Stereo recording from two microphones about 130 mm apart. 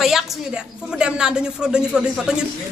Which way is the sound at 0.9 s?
5° right (ahead or behind).